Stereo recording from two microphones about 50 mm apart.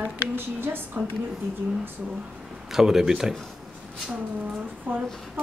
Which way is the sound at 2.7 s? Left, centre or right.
Centre.